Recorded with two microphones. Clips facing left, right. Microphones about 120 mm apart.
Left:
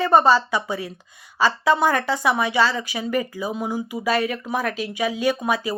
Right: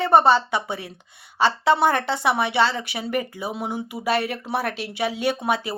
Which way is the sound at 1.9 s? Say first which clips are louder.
Left 1 dB; 60° right (ahead or behind).